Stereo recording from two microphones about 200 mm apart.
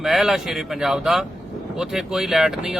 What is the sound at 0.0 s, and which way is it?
Speech, centre (ahead or behind).